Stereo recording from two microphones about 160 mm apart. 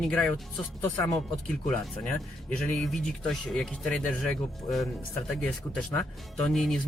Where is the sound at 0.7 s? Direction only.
20° left (ahead or behind).